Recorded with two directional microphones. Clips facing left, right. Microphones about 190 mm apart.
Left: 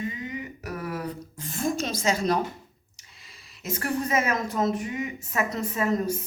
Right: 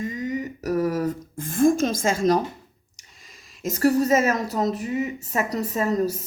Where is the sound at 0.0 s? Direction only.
40° right (ahead or behind).